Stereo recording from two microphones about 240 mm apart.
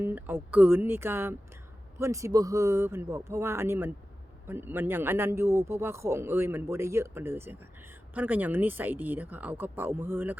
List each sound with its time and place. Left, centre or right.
0.0 s a man's voice: centre